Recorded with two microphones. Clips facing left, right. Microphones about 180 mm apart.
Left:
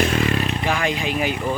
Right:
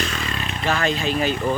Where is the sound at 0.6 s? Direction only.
15° left (ahead or behind).